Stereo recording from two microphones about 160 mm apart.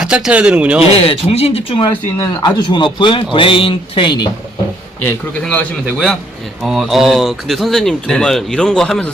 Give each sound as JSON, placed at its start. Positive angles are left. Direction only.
{"t": 0.0, "sound": "speech", "side_deg": -5}
{"t": 0.9, "sound": "speech", "side_deg": 35}
{"t": 5.0, "sound": "a man's voice", "side_deg": 10}